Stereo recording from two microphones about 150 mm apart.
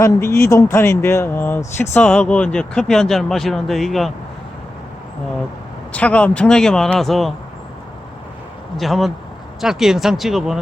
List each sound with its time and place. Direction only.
0.0 s speech: 20° left (ahead or behind); by 4.1 s centre (ahead or behind)
5.9 s speech: 10° left (ahead or behind)
8.8 s speech: centre (ahead or behind)